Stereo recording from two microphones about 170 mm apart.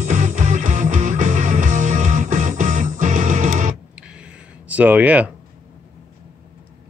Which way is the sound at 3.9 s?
5° right (ahead or behind).